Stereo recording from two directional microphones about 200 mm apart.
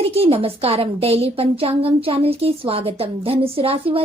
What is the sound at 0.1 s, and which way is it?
A woman's voice, 30° right (ahead or behind).